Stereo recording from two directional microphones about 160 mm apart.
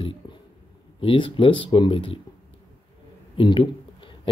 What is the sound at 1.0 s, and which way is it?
Speech, 30° left (ahead or behind).